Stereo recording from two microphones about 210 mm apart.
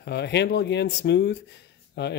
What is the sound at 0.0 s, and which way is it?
Speech, 55° left (ahead or behind).